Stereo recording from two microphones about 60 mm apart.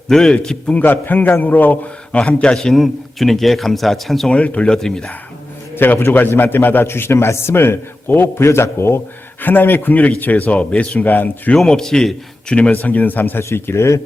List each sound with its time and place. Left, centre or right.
0.1 s a man's voice: centre
0.7 s a man's voice: left
2.6 s a man's voice: centre
4.3 s a man's voice: left
4.7 s a man's voice: centre
5.7 s a man's voice: left
9.4 s a man's voice: left
11.5 s a man's voice: centre
12.5 s a man's voice: left
13.4 s a man's voice: left